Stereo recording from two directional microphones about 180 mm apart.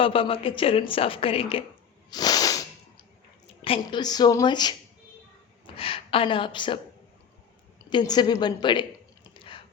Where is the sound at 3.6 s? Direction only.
30° left (ahead or behind).